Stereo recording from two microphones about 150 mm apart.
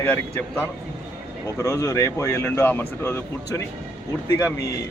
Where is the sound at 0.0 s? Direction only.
10° left (ahead or behind).